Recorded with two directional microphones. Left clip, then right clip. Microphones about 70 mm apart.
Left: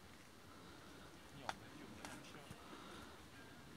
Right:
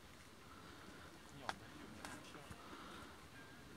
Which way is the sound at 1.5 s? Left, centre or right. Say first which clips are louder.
Right 1 dB; centre.